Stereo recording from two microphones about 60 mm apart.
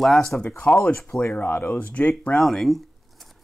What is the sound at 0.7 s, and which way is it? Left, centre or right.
Speech, left.